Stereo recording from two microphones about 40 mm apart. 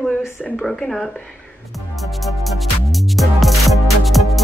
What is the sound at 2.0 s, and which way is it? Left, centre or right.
Music, centre.